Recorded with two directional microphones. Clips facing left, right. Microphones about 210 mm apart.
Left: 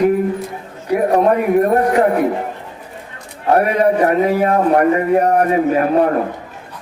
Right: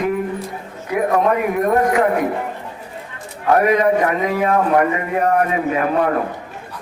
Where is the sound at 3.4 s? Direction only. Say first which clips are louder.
Left 1 dB; 35° left (ahead or behind).